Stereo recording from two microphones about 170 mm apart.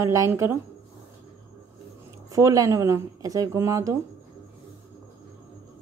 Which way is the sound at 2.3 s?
20° right (ahead or behind).